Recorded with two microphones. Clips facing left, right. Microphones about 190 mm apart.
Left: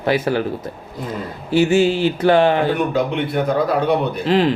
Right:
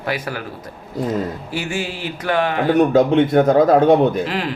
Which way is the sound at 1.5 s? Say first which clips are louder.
Left 14 dB; 25° left (ahead or behind).